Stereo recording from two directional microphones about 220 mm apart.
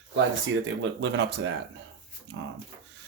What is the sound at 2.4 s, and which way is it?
Speech, 60° right (ahead or behind).